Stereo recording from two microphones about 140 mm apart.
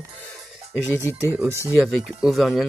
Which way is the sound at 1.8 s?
Centre (ahead or behind).